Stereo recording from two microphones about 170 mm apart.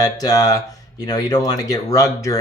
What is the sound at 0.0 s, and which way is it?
Speech, 20° left (ahead or behind).